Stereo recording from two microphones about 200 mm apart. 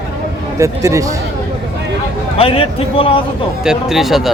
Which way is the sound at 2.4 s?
30° left (ahead or behind).